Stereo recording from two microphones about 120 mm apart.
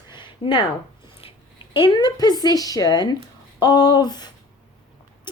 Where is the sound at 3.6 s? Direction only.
40° left (ahead or behind).